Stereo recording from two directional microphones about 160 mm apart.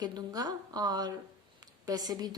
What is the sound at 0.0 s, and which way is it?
A woman's voice, 25° right (ahead or behind).